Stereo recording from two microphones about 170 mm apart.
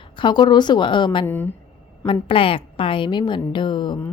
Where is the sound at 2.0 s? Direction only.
30° left (ahead or behind).